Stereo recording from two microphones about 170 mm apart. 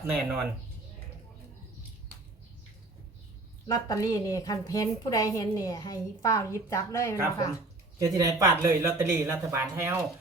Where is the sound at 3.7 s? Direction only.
20° left (ahead or behind).